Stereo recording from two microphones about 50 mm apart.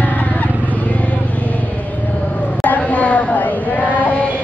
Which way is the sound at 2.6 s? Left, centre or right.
Left.